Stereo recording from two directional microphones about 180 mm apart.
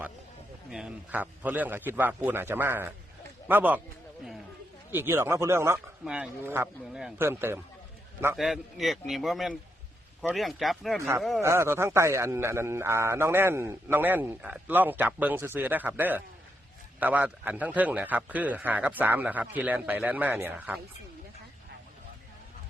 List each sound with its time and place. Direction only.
0.7 s a man's voice: 5° right (ahead or behind)
4.9 s a man's voice: 15° right (ahead or behind)
8.4 s speech: centre (ahead or behind)
11.4 s a man's voice: 15° right (ahead or behind)